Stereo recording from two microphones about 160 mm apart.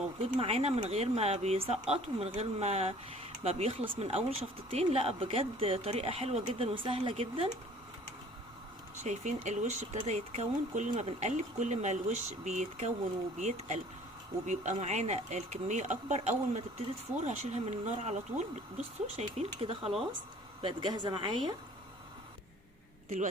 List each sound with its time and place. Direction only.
0.2 s speech: 35° right (ahead or behind)
9.0 s a woman's voice: 45° right (ahead or behind); by 21.5 s 30° right (ahead or behind)
23.0 s speech: 50° right (ahead or behind)